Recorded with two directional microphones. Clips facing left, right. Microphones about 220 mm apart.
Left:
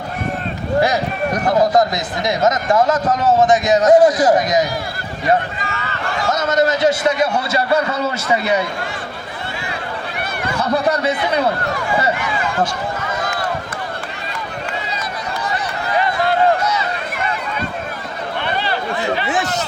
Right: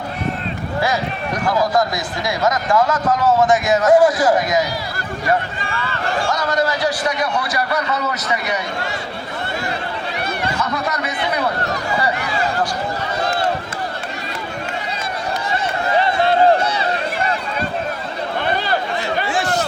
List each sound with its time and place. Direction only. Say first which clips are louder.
1.5 s a man's voice: left 3 dB; 20° left (ahead or behind)
6.3 s a man's voice: left 7 dB; 20° left (ahead or behind)
10.6 s speech: left 5 dB; 30° left (ahead or behind)
13.2 s run: right 3 dB; 30° right (ahead or behind)
15.9 s run: right 1 dB; 25° right (ahead or behind)
19.2 s chatter: even; 20° left (ahead or behind)